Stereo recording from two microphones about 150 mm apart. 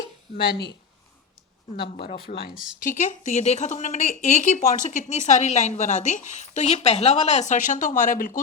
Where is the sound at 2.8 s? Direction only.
55° left (ahead or behind).